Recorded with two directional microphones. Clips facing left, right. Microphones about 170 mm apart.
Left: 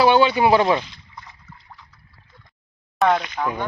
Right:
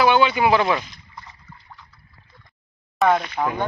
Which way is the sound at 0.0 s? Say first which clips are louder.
Left 2 dB; 30° left (ahead or behind).